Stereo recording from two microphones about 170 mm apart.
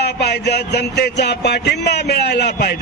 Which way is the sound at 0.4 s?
80° left.